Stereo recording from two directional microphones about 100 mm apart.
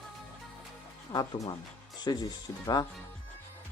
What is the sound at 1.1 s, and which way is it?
Speech, 45° left (ahead or behind).